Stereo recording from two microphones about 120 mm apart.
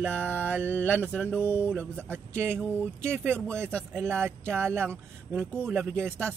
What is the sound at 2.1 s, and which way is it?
Speech, 20° right (ahead or behind).